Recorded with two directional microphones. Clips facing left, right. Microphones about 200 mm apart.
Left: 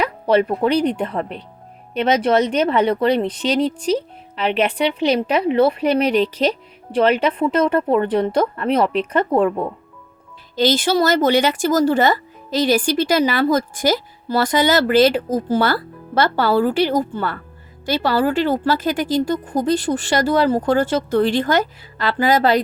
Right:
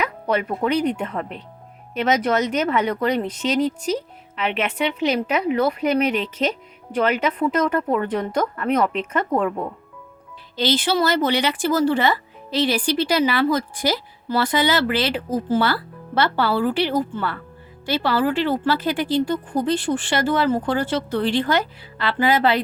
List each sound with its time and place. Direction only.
0.0 s speech: 30° left (ahead or behind)
10.5 s speech: 45° left (ahead or behind)